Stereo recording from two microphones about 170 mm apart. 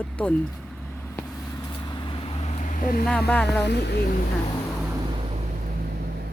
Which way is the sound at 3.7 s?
80° left.